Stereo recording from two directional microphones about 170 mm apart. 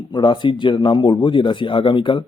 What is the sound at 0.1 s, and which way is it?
Speech, 25° left (ahead or behind).